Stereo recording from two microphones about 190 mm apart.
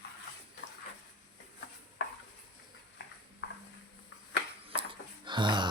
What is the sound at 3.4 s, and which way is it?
Clip-clop, 70° left (ahead or behind).